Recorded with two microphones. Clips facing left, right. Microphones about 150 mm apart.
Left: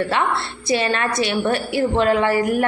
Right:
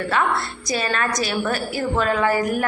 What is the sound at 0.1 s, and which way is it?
A woman's voice, 30° left (ahead or behind).